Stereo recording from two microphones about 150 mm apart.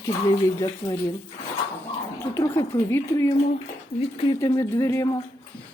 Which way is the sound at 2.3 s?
20° left (ahead or behind).